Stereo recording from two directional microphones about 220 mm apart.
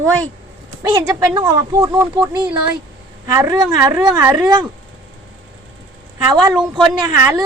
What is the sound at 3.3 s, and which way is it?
A woman's voice, 15° right (ahead or behind).